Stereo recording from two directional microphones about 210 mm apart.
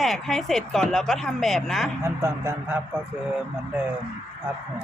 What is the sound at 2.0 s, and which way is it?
Speech, 15° right (ahead or behind).